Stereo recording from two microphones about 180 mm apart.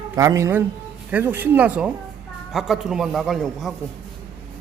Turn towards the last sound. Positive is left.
turn(degrees=0)  # may be behind; listen again after turning